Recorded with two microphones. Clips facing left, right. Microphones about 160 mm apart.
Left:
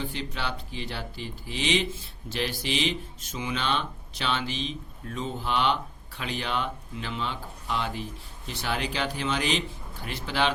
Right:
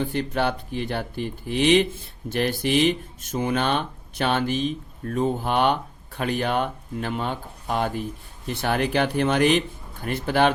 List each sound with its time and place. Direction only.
0.0 s a man's voice: 55° right (ahead or behind)